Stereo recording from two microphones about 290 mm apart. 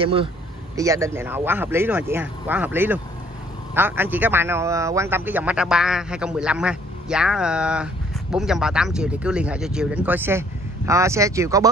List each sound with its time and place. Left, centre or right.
0.0 s a man's voice: centre